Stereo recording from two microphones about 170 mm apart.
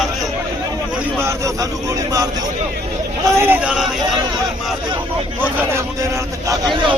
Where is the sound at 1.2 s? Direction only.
20° right (ahead or behind).